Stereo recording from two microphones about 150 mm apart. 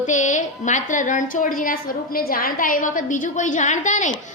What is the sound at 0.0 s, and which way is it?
A woman's voice, 55° left (ahead or behind).